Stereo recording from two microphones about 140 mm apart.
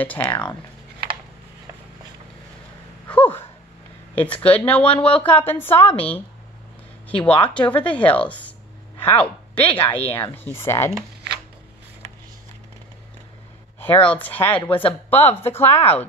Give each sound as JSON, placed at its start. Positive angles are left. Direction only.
{"t": 0.0, "sound": "speech", "side_deg": 10}
{"t": 3.1, "sound": "a sound", "side_deg": 10}
{"t": 4.1, "sound": "speech", "side_deg": 10}
{"t": 13.7, "sound": "speech", "side_deg": 15}